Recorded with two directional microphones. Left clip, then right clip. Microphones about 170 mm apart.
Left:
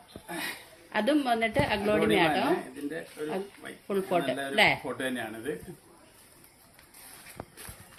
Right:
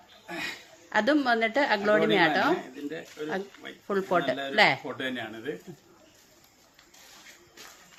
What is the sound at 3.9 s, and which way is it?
Speech, 25° right (ahead or behind).